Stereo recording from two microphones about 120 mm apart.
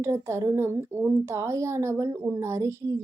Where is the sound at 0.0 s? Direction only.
25° right (ahead or behind).